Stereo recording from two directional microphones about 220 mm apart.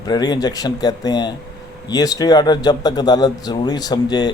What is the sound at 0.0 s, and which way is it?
Speech, 20° left (ahead or behind).